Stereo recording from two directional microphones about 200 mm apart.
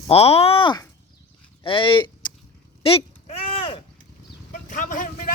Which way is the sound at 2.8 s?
30° left (ahead or behind).